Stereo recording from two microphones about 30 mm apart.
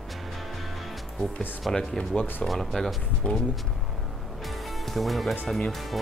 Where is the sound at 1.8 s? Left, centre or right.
Left.